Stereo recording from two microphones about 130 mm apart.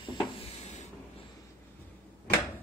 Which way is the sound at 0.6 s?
60° left (ahead or behind).